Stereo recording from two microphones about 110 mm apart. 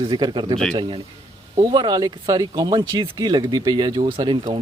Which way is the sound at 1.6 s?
40° right (ahead or behind).